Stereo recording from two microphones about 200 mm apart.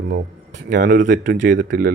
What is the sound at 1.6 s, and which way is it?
Speech, 55° right (ahead or behind).